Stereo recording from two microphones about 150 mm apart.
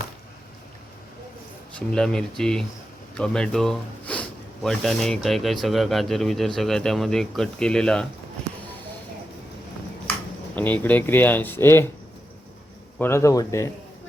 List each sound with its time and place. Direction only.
1.9 s speech: 5° left (ahead or behind)
10.5 s speech: 10° left (ahead or behind)
13.0 s speech: 15° left (ahead or behind)